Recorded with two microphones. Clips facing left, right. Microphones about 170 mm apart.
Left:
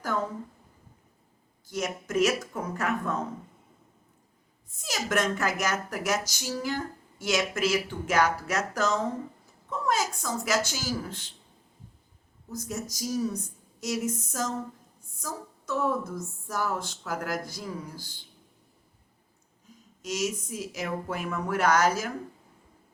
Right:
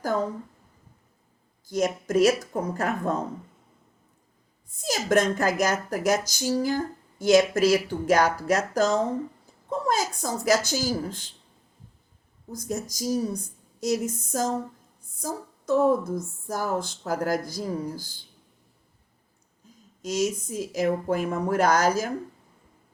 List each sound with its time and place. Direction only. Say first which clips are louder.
1.6 s speech: right 7 dB; 35° right (ahead or behind)
4.8 s speech: right 6 dB; 35° right (ahead or behind)
12.5 s speech: right 3 dB; 35° right (ahead or behind)
20.0 s speech: right 5 dB; 30° right (ahead or behind)